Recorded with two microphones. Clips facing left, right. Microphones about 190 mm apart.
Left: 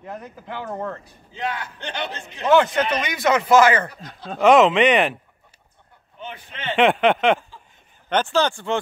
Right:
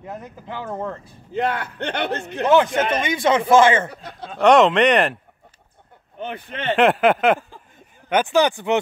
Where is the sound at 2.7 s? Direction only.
50° right (ahead or behind).